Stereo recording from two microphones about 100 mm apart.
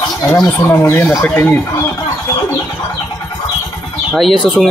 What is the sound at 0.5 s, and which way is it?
Speech, 15° left (ahead or behind).